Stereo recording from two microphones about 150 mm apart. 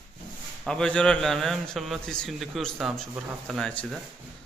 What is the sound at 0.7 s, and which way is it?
A man's voice, 5° left (ahead or behind).